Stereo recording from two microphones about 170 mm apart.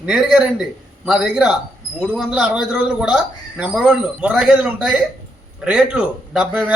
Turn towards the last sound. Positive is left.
turn(degrees=-5)  # may be behind; listen again after turning